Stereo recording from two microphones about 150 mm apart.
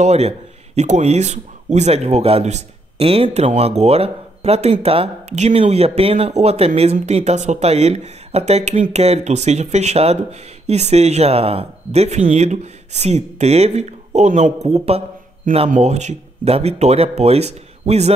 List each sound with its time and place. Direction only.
0.0 s speech: 45° right (ahead or behind)